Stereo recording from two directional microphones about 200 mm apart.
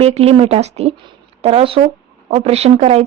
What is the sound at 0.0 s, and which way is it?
Speech, 30° right (ahead or behind).